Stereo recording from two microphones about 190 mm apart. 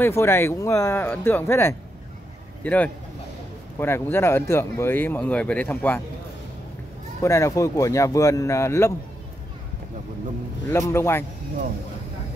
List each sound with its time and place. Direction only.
0.0 s speech: 15° left (ahead or behind)
7.2 s speech: 15° left (ahead or behind)
10.7 s speech: 15° left (ahead or behind)